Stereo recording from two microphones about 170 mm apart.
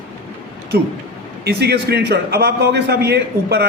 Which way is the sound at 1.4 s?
75° right (ahead or behind).